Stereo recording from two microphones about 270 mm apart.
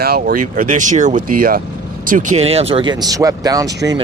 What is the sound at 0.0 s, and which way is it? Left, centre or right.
Speech, right.